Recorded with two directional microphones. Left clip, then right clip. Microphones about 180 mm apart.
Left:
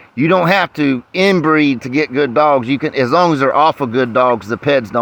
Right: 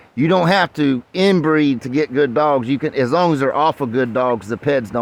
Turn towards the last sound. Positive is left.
turn(degrees=-15)  # may be behind; listen again after turning